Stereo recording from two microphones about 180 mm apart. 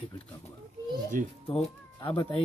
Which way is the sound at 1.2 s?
50° right (ahead or behind).